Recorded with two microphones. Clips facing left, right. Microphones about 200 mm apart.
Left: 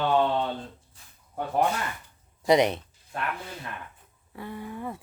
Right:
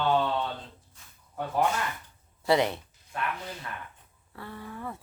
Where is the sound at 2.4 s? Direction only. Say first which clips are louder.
Left 4 dB; 20° left (ahead or behind).